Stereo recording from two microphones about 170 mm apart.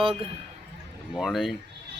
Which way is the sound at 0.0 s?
35° right (ahead or behind).